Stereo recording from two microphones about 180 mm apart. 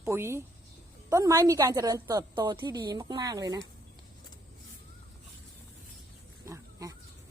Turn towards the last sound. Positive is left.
turn(degrees=-15)  # may be behind; listen again after turning